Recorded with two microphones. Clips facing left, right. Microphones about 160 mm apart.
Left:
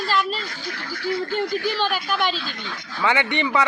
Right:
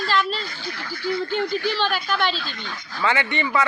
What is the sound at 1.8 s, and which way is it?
A man's voice, 10° left (ahead or behind).